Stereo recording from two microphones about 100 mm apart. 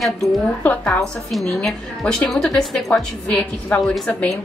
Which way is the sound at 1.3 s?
5° left (ahead or behind).